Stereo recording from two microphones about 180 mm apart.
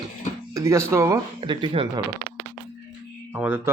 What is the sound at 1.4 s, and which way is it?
Speech, 30° right (ahead or behind).